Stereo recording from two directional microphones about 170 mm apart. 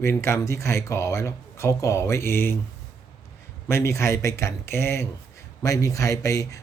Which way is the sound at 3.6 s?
15° left (ahead or behind).